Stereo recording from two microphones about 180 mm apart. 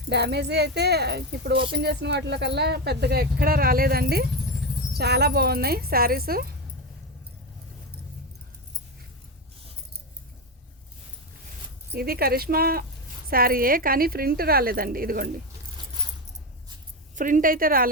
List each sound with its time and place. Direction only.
0.1 s speech: 65° right (ahead or behind)
11.9 s speech: 55° right (ahead or behind)
17.2 s a woman's voice: 45° right (ahead or behind)